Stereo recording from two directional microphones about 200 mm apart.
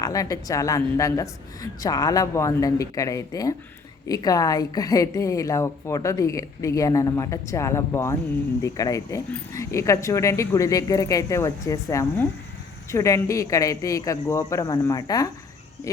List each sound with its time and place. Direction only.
0.0 s a woman's voice: 15° left (ahead or behind)